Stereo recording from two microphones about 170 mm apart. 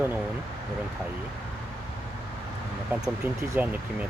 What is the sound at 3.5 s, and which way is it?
Speech, 10° right (ahead or behind).